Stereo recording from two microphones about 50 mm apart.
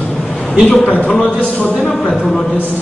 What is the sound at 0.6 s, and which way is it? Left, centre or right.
Speech, left.